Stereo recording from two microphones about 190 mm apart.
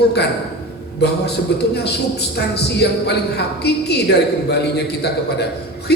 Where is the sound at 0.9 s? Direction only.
60° left (ahead or behind).